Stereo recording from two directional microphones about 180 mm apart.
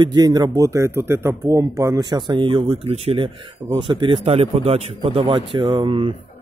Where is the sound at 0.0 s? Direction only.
20° right (ahead or behind).